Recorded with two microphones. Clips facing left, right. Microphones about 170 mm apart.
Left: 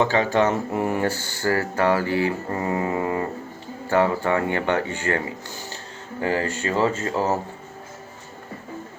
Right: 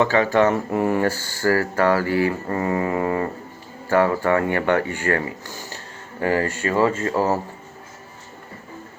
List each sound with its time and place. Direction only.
0.0 s speech: 20° left (ahead or behind)
6.2 s speech: 20° left (ahead or behind)